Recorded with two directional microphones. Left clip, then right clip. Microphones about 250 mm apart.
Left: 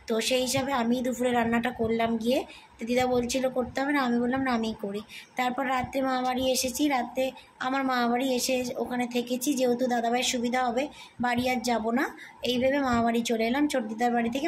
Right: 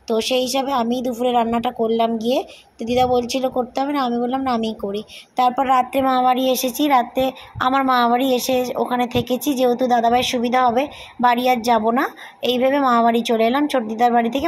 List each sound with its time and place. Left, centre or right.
0.1 s a woman's voice: centre